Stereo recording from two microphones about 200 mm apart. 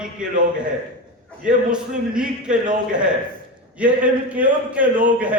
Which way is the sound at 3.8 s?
5° right (ahead or behind).